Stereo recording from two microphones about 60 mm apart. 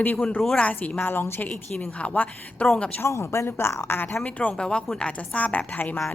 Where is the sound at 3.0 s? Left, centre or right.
Left.